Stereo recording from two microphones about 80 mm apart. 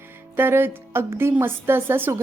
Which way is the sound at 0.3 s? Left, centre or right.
Right.